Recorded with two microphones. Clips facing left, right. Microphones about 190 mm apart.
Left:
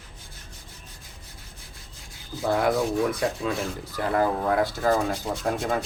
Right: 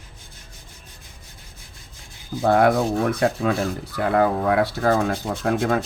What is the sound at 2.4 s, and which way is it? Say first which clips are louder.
Speech: right 5 dB; 60° right (ahead or behind).